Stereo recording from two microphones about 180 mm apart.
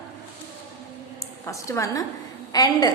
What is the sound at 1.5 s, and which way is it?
A woman's voice, 15° left (ahead or behind).